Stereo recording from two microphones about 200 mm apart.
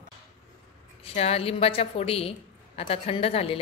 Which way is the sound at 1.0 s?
30° left (ahead or behind).